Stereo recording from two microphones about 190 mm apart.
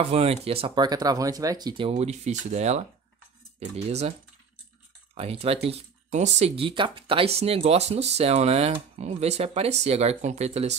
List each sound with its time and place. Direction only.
0.0 s speech: 35° right (ahead or behind)
5.1 s speech: 30° right (ahead or behind)